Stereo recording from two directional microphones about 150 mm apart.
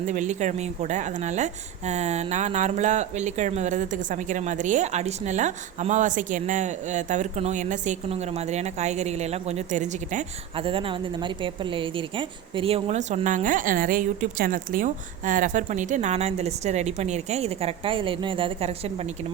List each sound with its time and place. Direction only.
0.0 s speech: 55° right (ahead or behind)
10.6 s speech: 35° right (ahead or behind)